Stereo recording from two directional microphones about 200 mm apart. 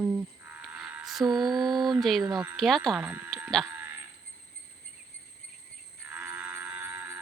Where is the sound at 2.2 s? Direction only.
20° right (ahead or behind).